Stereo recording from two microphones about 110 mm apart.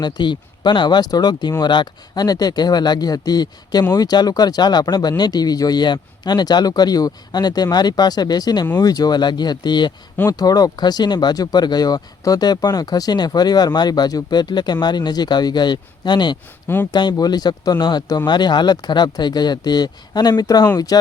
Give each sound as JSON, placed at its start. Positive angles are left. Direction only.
{"t": 0.0, "sound": "speech", "side_deg": 45}